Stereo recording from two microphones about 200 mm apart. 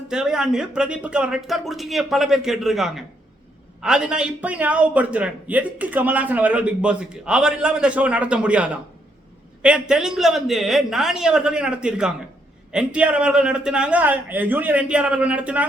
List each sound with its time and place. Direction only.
0.1 s a man's voice: 5° right (ahead or behind)